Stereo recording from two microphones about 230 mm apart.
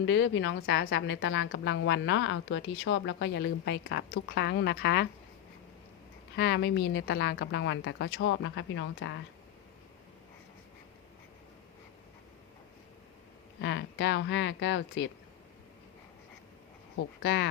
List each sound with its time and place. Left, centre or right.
0.0 s a woman's voice: left
6.3 s a woman's voice: left
13.6 s a woman's voice: left
17.2 s a woman's voice: left